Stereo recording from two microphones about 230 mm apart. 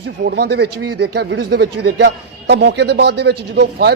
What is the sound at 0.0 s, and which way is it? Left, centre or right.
A man's voice, right.